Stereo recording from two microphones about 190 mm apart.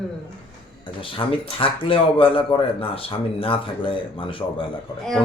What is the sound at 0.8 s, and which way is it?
Speech, 25° left (ahead or behind).